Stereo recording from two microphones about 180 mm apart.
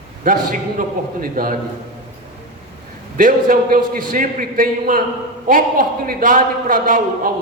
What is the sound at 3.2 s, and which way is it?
A man's voice, 50° right (ahead or behind).